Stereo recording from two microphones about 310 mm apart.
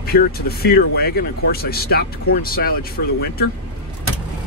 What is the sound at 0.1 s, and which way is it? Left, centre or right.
Speech, left.